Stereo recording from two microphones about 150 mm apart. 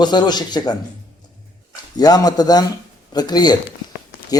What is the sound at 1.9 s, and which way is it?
Speech, 25° left (ahead or behind).